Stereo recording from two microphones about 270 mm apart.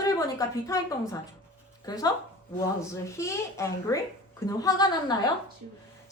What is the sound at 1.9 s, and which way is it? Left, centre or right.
A woman's voice, centre.